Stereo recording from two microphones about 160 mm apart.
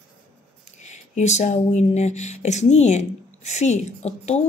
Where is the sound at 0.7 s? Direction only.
45° left (ahead or behind).